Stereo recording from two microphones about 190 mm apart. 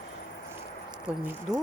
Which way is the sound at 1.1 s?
5° right (ahead or behind).